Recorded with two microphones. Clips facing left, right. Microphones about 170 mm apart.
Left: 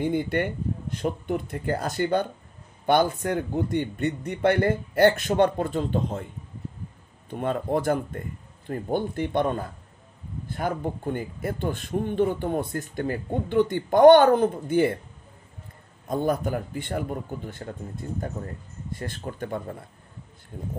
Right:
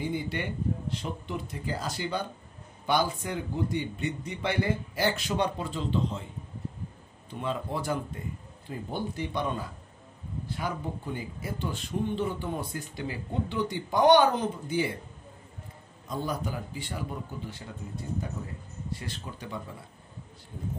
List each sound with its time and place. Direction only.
0.0 s a man's voice: 55° left (ahead or behind)
7.2 s a man's voice: 50° left (ahead or behind)
16.1 s a man's voice: 55° left (ahead or behind)
18.9 s a man's voice: 50° left (ahead or behind)